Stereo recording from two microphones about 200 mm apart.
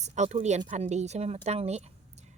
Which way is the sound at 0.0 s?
35° right (ahead or behind).